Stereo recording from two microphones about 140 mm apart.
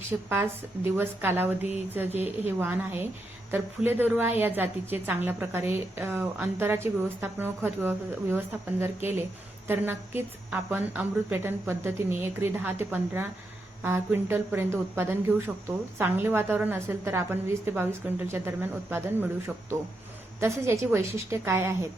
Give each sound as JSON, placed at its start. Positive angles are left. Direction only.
{"t": 0.1, "sound": "a woman's voice", "side_deg": -10}